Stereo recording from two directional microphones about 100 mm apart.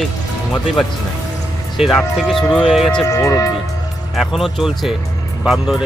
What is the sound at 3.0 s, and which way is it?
Speech, 35° left (ahead or behind).